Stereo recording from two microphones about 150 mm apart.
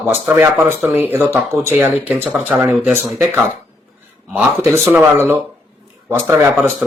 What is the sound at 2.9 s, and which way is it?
Speech, 15° right (ahead or behind).